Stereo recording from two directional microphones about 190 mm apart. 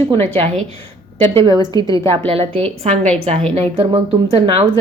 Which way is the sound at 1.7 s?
20° left (ahead or behind).